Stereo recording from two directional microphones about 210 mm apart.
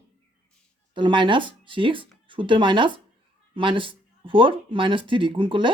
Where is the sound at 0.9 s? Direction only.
20° right (ahead or behind).